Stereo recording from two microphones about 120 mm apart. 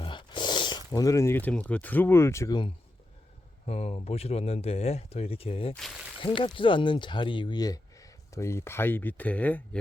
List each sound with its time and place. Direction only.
0.0 s speech: 40° left (ahead or behind); by 2.5 s 25° left (ahead or behind)
2.5 s speech: 40° left (ahead or behind)
3.7 s speech: 60° left (ahead or behind); by 9.6 s 10° left (ahead or behind)